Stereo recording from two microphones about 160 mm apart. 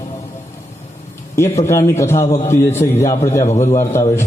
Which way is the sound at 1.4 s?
15° left (ahead or behind).